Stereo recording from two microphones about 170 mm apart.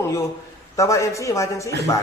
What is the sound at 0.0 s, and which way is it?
A man's voice, 15° left (ahead or behind).